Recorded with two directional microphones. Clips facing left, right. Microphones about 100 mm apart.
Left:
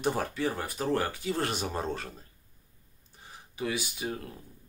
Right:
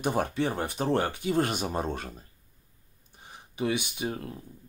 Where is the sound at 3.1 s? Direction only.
20° right (ahead or behind).